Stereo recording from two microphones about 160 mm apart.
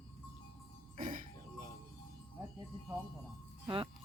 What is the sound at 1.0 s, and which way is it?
Music, 55° right (ahead or behind).